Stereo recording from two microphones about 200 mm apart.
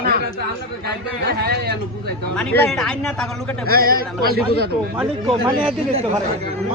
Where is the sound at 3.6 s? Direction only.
50° right (ahead or behind).